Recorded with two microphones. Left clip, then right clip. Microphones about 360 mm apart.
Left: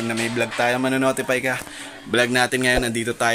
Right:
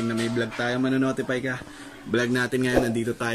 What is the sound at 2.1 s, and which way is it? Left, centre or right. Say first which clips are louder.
Speech: left 6 dB; centre.